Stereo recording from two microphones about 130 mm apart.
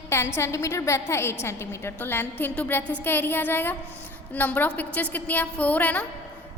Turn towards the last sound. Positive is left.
turn(degrees=10)  # may be behind; listen again after turning